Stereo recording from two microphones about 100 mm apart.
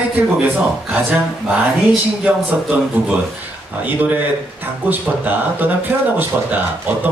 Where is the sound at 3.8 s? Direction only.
15° right (ahead or behind).